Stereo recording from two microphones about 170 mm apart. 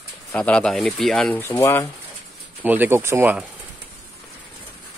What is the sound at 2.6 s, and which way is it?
Speech, 10° right (ahead or behind).